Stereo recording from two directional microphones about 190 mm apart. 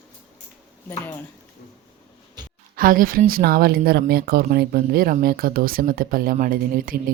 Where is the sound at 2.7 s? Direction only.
45° right (ahead or behind).